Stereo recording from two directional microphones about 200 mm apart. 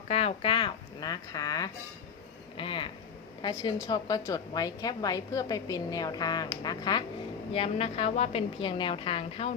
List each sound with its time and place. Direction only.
0.1 s a woman's voice: 30° left (ahead or behind)